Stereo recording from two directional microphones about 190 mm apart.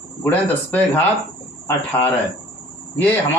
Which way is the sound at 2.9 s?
10° left (ahead or behind).